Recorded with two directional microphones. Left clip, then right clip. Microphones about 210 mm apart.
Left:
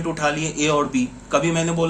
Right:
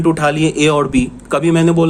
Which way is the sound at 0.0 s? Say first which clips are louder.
Right 9 dB; 55° right (ahead or behind).